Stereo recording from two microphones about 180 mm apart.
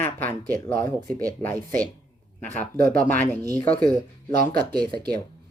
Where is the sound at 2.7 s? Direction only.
50° right (ahead or behind).